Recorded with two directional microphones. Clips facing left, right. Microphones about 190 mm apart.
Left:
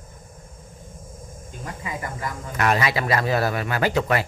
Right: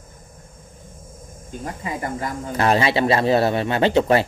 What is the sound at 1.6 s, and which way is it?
Speech, 35° right (ahead or behind).